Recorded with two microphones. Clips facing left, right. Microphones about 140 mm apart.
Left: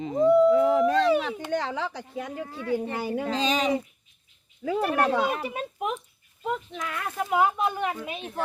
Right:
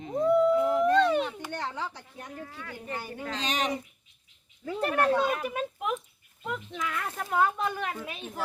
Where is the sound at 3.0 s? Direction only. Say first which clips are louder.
Left 10 dB; 90° left.